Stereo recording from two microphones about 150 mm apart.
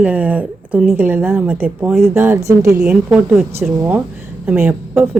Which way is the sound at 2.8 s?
5° right (ahead or behind).